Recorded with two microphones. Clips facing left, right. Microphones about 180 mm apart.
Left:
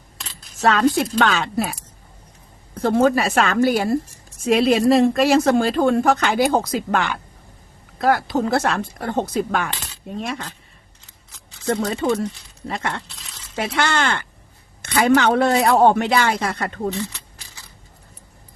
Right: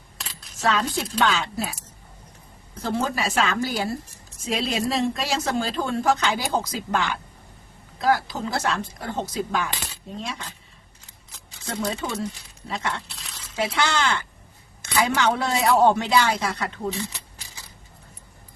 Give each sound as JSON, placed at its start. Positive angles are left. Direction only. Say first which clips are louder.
{"t": 0.2, "sound": "a sound", "louder": "even", "side_deg": 0}
{"t": 0.6, "sound": "a woman's voice", "louder": "left 7 dB", "side_deg": 60}
{"t": 12.6, "sound": "a woman's voice", "louder": "left 3 dB", "side_deg": 55}